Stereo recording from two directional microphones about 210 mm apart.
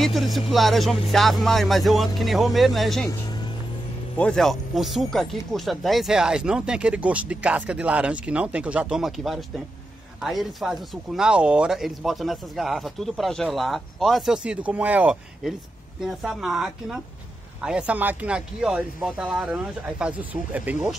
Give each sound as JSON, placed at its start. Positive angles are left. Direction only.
{"t": 0.0, "sound": "speech", "side_deg": 0}
{"t": 3.1, "sound": "music", "side_deg": 20}
{"t": 4.2, "sound": "speech", "side_deg": 0}